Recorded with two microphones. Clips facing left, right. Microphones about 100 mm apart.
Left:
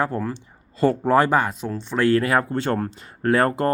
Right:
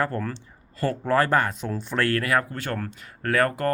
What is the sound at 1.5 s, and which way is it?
Speech, centre (ahead or behind).